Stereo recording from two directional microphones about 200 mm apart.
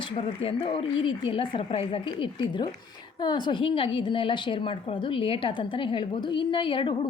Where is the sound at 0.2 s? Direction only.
25° left (ahead or behind).